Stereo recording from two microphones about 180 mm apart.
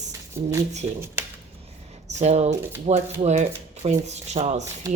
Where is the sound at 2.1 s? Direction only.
40° right (ahead or behind).